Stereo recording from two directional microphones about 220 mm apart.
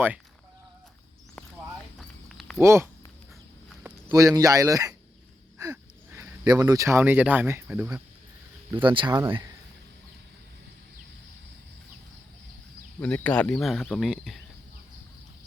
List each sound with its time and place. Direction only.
2.0 s a sound: centre (ahead or behind)
2.6 s speech: 10° right (ahead or behind)
4.4 s speech: 15° right (ahead or behind)
8.8 s speech: 20° right (ahead or behind)
13.0 s speech: 5° left (ahead or behind)